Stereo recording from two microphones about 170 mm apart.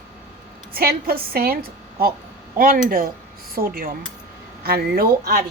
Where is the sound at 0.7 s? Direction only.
60° right (ahead or behind).